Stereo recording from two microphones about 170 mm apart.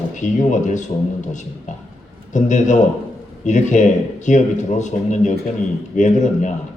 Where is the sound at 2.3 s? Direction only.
45° left (ahead or behind).